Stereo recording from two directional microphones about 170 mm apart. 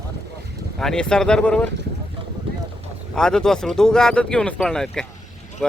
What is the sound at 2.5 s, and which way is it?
Boat, 30° right (ahead or behind).